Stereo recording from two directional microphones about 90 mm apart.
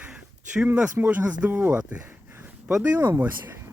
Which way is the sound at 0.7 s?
15° right (ahead or behind).